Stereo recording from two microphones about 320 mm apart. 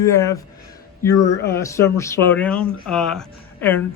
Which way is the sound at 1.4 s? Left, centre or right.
Centre.